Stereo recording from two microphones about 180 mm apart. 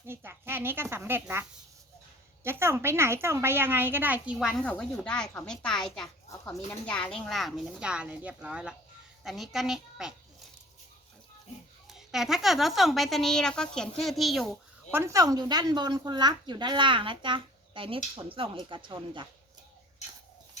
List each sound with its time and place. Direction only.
0.0 s a woman's voice: 15° right (ahead or behind)
11.9 s speech: centre (ahead or behind)
14.9 s speech: 15° right (ahead or behind)